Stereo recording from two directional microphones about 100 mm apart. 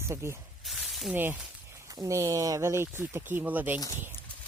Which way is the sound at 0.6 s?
Centre (ahead or behind).